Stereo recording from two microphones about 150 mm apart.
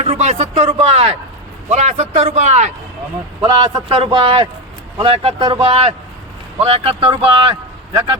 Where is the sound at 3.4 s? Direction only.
30° right (ahead or behind).